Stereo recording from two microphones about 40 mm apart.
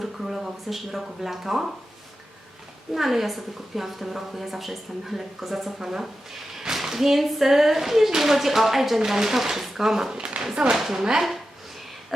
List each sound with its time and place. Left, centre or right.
0.0 s speech: centre
2.9 s a woman's voice: centre
10.1 s speech: right
10.8 s speech: centre